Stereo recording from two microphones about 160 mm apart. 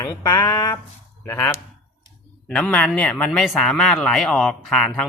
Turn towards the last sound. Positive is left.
turn(degrees=0)  # may be behind; listen again after turning